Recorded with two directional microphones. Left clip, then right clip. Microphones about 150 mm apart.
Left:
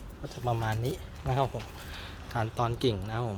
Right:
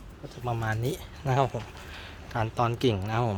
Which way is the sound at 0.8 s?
50° right (ahead or behind).